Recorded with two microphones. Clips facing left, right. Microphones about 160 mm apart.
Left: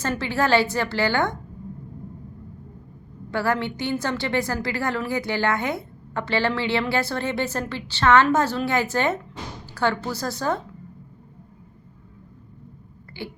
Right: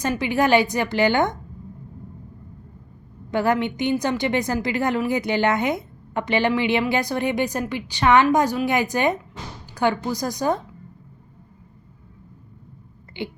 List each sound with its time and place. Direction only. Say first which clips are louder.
0.0 s a woman's voice: right 3 dB; 15° right (ahead or behind)
3.3 s a woman's voice: right 3 dB; 20° right (ahead or behind)
13.2 s speech: right 4 dB; 20° right (ahead or behind)